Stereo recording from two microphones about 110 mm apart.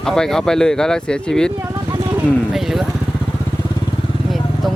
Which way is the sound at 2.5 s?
Centre (ahead or behind).